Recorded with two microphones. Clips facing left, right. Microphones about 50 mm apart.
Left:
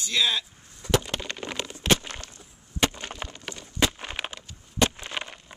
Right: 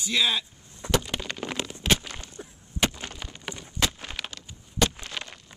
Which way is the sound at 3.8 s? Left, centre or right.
Centre.